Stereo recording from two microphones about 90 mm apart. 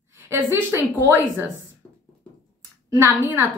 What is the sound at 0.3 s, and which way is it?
A woman's voice, 25° right (ahead or behind).